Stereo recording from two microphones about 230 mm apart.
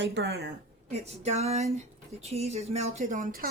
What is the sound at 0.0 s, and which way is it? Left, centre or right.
Speech, right.